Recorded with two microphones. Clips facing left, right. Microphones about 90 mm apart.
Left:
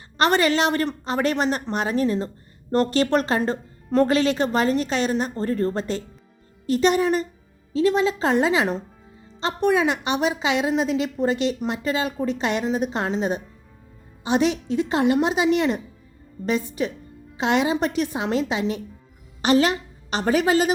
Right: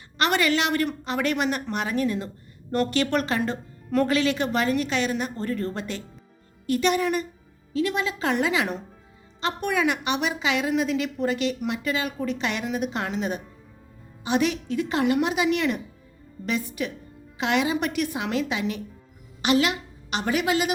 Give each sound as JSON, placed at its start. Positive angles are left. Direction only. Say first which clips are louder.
{"t": 0.2, "sound": "a woman's voice", "louder": "left 4 dB", "side_deg": 35}